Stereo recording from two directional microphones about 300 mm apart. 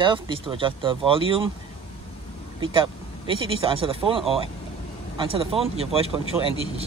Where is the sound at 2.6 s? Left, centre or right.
Centre.